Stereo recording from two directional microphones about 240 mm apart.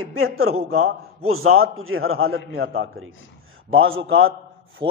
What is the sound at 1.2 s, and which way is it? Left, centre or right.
A man's voice, right.